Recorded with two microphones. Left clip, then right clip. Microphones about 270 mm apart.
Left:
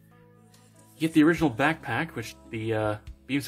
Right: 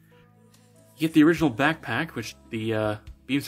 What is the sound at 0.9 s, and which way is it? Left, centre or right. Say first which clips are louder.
Speech: right 2 dB; centre.